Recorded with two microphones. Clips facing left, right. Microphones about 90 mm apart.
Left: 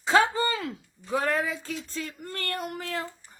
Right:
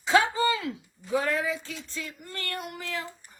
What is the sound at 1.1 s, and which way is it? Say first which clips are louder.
A woman's voice: even; 40° left (ahead or behind).